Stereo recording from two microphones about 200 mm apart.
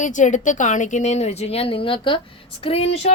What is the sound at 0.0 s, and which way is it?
A woman's voice, 40° left (ahead or behind).